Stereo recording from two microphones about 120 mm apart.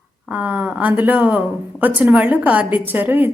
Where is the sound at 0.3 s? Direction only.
15° right (ahead or behind).